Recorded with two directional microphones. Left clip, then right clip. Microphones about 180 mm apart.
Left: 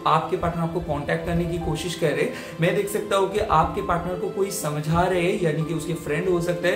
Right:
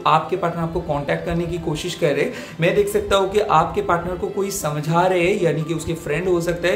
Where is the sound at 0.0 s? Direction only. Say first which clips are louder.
Right 4 dB; 30° right (ahead or behind).